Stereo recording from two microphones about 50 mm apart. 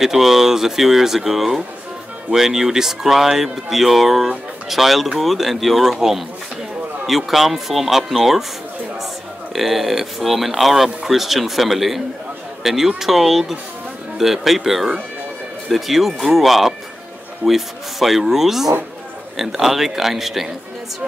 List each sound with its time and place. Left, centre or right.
0.0 s speech: centre